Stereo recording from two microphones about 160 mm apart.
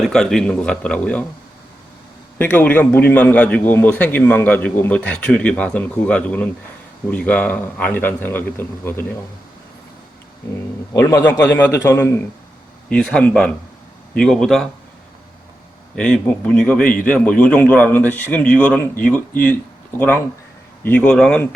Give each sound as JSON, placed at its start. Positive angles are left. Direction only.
{"t": 0.0, "sound": "a man's voice", "side_deg": 0}
{"t": 2.4, "sound": "a man's voice", "side_deg": 10}
{"t": 10.9, "sound": "a man's voice", "side_deg": 15}
{"t": 12.9, "sound": "a man's voice", "side_deg": 5}
{"t": 16.0, "sound": "a man's voice", "side_deg": 5}